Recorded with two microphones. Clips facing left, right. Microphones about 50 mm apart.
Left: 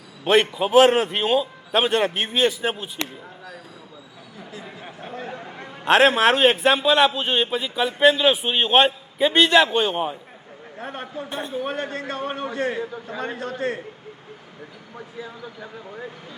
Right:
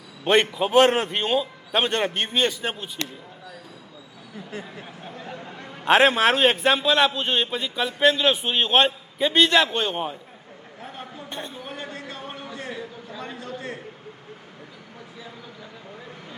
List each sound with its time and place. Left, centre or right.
0.3 s a man's voice: centre
4.6 s speech: left
5.3 s a sound: left
5.8 s a man's voice: centre
10.8 s a sound: left
11.3 s speech: centre
11.6 s a man's voice: left